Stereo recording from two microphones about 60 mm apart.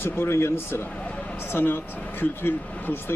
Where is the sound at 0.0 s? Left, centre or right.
Left.